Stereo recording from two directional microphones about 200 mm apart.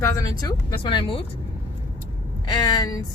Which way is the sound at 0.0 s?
20° left (ahead or behind).